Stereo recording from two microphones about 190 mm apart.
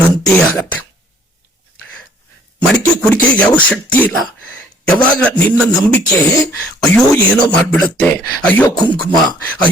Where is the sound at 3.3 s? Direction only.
5° left (ahead or behind).